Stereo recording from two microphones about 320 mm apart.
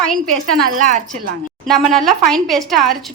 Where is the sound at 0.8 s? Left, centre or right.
Right.